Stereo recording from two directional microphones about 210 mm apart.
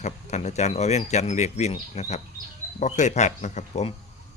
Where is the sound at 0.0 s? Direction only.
35° left (ahead or behind).